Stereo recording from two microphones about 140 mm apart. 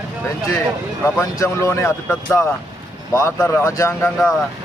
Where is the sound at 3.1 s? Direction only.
20° left (ahead or behind).